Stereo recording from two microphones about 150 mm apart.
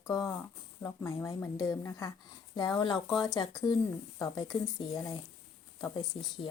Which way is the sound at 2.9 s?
Centre (ahead or behind).